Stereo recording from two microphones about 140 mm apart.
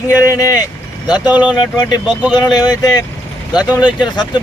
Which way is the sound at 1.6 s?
30° left (ahead or behind).